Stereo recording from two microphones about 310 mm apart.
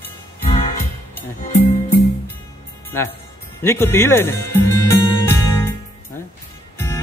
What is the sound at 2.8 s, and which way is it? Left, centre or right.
Speech, centre.